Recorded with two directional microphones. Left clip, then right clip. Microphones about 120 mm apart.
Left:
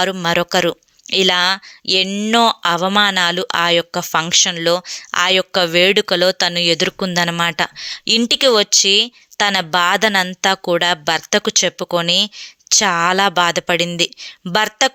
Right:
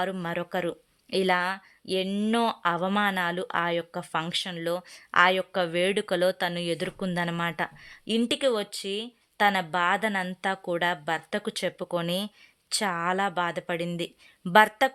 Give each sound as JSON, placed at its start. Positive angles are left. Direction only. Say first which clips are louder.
{"t": 0.0, "sound": "speech", "louder": "left 14 dB", "side_deg": 35}
{"t": 2.0, "sound": "speech", "louder": "left 8 dB", "side_deg": 20}
{"t": 2.3, "sound": "speech", "louder": "left 12 dB", "side_deg": 40}
{"t": 4.9, "sound": "speech", "louder": "left 6 dB", "side_deg": 25}
{"t": 9.7, "sound": "speech", "louder": "left 11 dB", "side_deg": 45}
{"t": 11.5, "sound": "speech", "louder": "left 13 dB", "side_deg": 30}